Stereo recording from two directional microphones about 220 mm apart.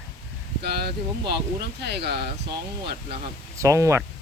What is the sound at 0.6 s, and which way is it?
Speech, 50° right (ahead or behind).